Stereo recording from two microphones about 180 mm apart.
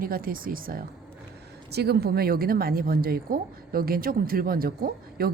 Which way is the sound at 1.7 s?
65° right (ahead or behind).